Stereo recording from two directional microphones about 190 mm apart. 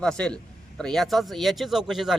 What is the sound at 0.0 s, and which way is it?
A man's voice, 5° left (ahead or behind).